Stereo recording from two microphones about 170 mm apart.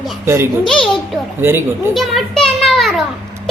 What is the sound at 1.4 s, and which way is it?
Speech, 15° right (ahead or behind).